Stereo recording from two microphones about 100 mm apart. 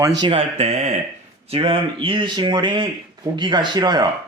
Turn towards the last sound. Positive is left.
turn(degrees=-45)  # may be behind; listen again after turning